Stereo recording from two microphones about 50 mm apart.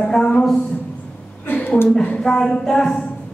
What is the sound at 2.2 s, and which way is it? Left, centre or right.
Speech, centre.